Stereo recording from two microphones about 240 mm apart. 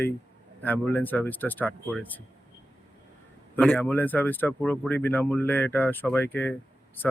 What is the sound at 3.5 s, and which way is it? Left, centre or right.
Speech, centre.